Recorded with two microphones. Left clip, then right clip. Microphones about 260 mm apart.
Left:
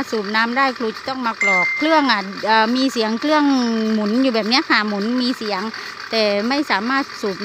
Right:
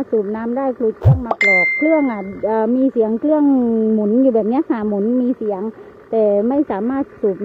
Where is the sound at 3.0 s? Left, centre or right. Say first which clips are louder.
Right 1 dB; left.